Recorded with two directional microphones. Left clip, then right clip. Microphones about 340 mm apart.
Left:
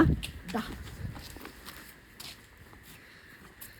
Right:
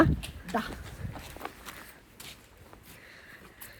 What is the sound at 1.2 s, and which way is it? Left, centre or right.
Run, centre.